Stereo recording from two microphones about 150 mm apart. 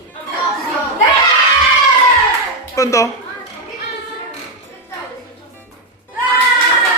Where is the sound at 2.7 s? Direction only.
20° left (ahead or behind).